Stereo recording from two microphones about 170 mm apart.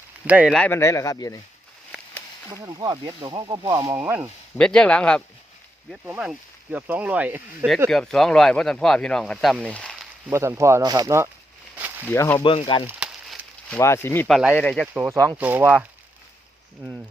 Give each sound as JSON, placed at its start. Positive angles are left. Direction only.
{"t": 0.3, "sound": "speech", "side_deg": -10}
{"t": 0.5, "sound": "speech", "side_deg": 10}
{"t": 2.6, "sound": "speech", "side_deg": -20}
{"t": 3.9, "sound": "speech", "side_deg": -10}
{"t": 4.5, "sound": "speech", "side_deg": 5}
{"t": 5.9, "sound": "speech", "side_deg": -5}
{"t": 9.7, "sound": "a sound", "side_deg": 5}
{"t": 10.2, "sound": "speech", "side_deg": -15}
{"t": 12.0, "sound": "speech", "side_deg": 15}
{"t": 12.5, "sound": "speech", "side_deg": 30}
{"t": 12.9, "sound": "a sound", "side_deg": -5}
{"t": 13.7, "sound": "speech", "side_deg": 15}
{"t": 14.3, "sound": "speech", "side_deg": -5}
{"t": 14.9, "sound": "speech", "side_deg": -10}